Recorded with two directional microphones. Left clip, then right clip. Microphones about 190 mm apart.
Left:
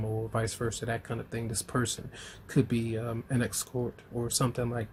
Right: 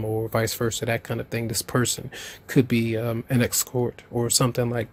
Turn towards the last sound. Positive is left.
turn(degrees=-45)  # may be behind; listen again after turning